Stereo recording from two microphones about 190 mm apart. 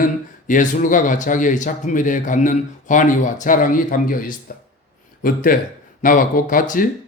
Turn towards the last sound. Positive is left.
turn(degrees=45)  # may be behind; listen again after turning